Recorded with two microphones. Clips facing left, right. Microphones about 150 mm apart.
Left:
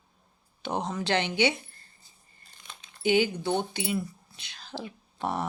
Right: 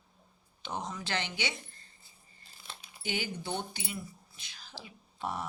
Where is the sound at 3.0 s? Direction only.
60° left (ahead or behind).